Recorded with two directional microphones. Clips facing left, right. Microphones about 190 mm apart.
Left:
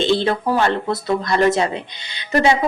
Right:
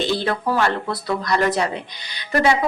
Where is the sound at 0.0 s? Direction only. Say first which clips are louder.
Left 4 dB; 25° left (ahead or behind).